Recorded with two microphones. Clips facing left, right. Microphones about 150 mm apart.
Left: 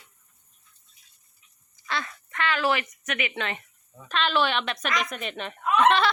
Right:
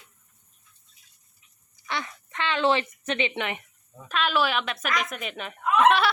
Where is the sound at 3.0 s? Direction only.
25° right (ahead or behind).